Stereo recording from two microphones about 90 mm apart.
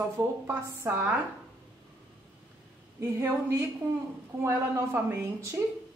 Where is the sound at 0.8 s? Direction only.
30° right (ahead or behind).